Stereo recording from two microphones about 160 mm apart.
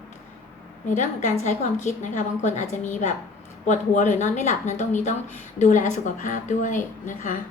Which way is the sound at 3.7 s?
50° left (ahead or behind).